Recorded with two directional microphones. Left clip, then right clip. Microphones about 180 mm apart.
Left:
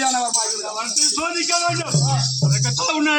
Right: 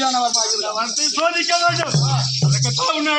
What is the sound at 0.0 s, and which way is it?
A man's voice, centre (ahead or behind).